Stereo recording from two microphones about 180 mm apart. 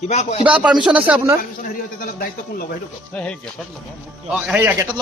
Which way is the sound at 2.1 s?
55° left (ahead or behind).